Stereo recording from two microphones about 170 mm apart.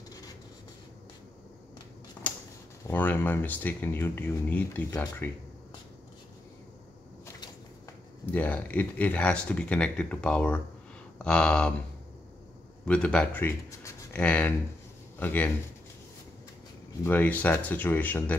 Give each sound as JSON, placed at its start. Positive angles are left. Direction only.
{"t": 2.2, "sound": "a sound", "side_deg": 15}
{"t": 2.9, "sound": "speech", "side_deg": 10}
{"t": 8.3, "sound": "speech", "side_deg": 10}
{"t": 11.2, "sound": "a sound", "side_deg": 5}
{"t": 12.8, "sound": "a man's voice", "side_deg": 5}
{"t": 17.0, "sound": "speech", "side_deg": 10}